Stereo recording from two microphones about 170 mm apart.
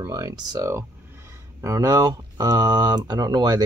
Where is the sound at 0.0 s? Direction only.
20° right (ahead or behind).